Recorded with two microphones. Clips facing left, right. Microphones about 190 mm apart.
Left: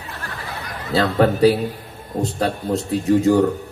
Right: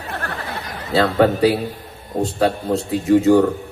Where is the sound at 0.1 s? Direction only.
60° right (ahead or behind).